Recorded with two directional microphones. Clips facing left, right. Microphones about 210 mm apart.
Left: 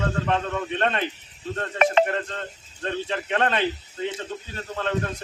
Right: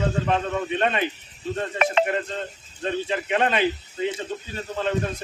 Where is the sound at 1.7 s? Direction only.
40° left (ahead or behind).